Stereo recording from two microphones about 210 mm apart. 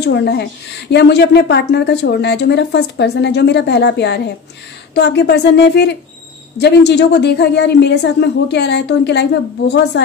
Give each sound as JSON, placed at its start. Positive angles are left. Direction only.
{"t": 0.0, "sound": "a woman's voice", "side_deg": 55}